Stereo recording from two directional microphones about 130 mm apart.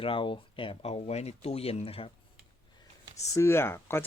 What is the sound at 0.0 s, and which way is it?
Speech, 40° left (ahead or behind).